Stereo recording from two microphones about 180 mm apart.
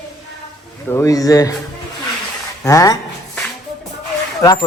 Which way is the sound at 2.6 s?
20° left (ahead or behind).